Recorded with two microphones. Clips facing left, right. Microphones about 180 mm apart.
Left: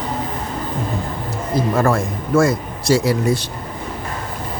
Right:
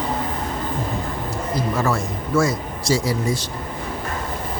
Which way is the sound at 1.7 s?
50° left (ahead or behind).